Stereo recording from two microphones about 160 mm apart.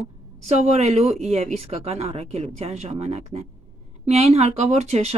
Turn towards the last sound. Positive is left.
turn(degrees=-45)  # may be behind; listen again after turning